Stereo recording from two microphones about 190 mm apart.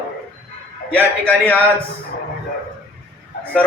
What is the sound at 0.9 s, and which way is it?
Speech, 5° left (ahead or behind).